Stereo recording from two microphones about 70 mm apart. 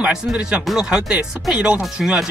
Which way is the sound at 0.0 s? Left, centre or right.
Centre.